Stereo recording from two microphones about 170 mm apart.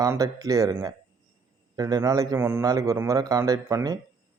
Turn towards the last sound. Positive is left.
turn(degrees=-20)  # may be behind; listen again after turning